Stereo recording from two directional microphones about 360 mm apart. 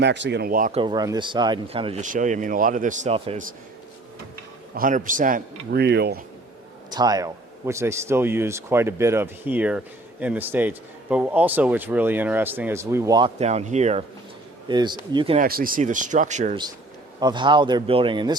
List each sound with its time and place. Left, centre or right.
0.0 s a man's voice: right
4.7 s a man's voice: right
6.9 s a man's voice: centre